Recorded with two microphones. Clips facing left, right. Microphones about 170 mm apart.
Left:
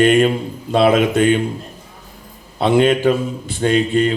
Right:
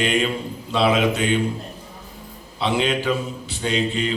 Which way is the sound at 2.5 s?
50° left (ahead or behind).